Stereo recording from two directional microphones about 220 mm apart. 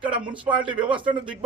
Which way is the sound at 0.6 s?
20° right (ahead or behind).